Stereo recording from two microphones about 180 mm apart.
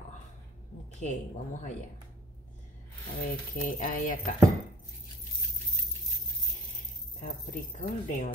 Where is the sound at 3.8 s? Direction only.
50° left (ahead or behind).